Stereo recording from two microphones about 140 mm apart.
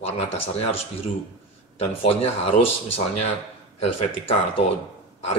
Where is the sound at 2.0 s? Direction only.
45° left (ahead or behind).